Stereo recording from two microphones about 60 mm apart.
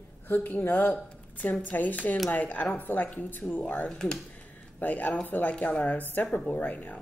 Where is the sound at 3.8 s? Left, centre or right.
Centre.